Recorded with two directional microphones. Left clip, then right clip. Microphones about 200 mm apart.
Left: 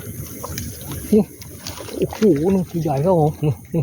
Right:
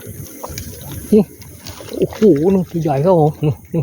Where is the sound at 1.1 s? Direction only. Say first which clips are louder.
Right 4 dB; 25° right (ahead or behind).